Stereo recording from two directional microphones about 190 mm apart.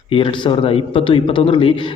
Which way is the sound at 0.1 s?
25° left (ahead or behind).